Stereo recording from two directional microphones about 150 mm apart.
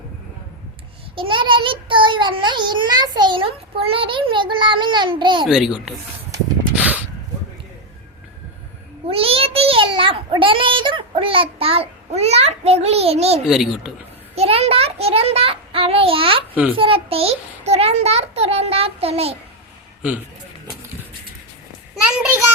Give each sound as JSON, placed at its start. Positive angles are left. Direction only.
{"t": 1.1, "sound": "child singing", "side_deg": -35}
{"t": 5.5, "sound": "a child's voice", "side_deg": -5}
{"t": 6.7, "sound": "a sound", "side_deg": -10}
{"t": 9.0, "sound": "a child's voice", "side_deg": -40}
{"t": 13.5, "sound": "a child's voice", "side_deg": -5}
{"t": 14.3, "sound": "child singing", "side_deg": -40}
{"t": 16.7, "sound": "a child's voice", "side_deg": -35}